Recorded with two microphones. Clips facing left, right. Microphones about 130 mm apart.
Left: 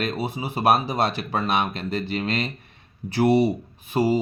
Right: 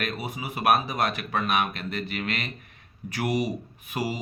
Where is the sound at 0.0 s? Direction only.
30° left (ahead or behind).